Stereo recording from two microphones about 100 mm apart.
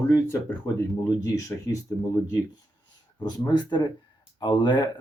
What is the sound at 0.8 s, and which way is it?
Speech, 30° left (ahead or behind).